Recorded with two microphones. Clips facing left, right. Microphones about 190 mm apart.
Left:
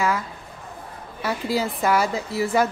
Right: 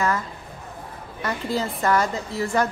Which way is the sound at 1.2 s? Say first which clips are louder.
Left 2 dB; 5° left (ahead or behind).